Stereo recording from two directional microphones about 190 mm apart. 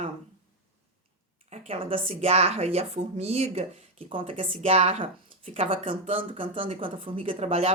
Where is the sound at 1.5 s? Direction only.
30° right (ahead or behind).